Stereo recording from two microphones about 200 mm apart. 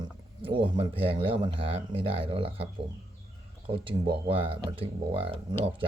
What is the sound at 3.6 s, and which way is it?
Speech, 25° right (ahead or behind).